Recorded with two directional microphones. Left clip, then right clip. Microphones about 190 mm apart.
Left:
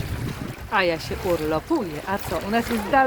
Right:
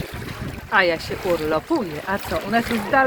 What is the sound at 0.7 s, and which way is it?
Speech, 10° left (ahead or behind).